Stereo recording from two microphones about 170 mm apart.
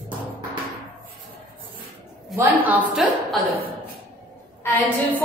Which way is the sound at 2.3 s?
10° right (ahead or behind).